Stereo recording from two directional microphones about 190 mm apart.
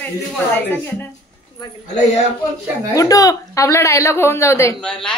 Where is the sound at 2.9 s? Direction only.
15° left (ahead or behind).